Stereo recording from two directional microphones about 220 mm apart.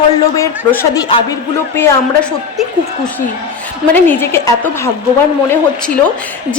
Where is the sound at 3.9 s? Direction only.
10° left (ahead or behind).